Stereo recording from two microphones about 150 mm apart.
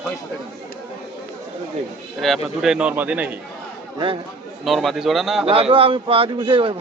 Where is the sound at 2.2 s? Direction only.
Centre (ahead or behind).